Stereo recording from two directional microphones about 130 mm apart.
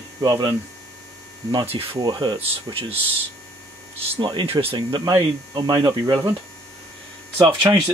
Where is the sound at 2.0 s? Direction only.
35° right (ahead or behind).